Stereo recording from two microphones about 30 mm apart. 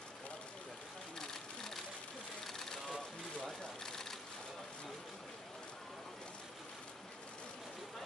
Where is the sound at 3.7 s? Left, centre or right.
Centre.